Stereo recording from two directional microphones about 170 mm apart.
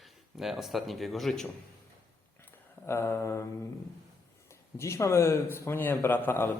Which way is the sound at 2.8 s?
15° left (ahead or behind).